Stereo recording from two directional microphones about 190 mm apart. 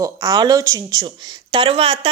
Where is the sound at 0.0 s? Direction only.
20° right (ahead or behind).